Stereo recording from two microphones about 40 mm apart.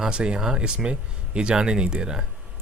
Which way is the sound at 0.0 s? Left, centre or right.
Right.